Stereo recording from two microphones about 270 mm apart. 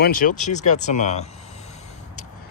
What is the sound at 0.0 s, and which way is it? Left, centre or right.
Speech, left.